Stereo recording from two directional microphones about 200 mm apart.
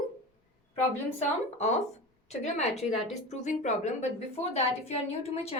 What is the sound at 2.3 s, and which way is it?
A woman's voice, 35° left (ahead or behind).